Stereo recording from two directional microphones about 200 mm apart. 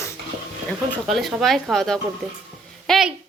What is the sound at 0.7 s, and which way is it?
Speech, centre (ahead or behind).